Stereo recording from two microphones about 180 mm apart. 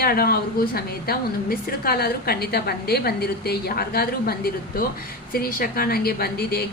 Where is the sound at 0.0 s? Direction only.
55° left (ahead or behind).